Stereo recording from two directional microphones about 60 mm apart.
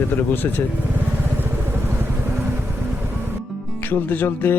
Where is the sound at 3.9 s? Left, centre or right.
Left.